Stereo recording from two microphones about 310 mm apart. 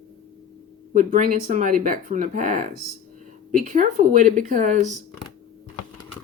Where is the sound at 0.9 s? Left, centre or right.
Right.